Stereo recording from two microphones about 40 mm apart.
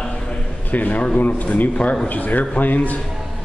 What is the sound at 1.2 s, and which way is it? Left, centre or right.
A man's voice, left.